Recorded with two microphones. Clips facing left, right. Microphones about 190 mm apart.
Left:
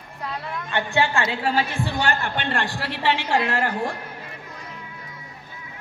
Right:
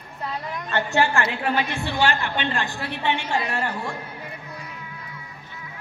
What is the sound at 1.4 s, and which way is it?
A man's voice, 30° left (ahead or behind).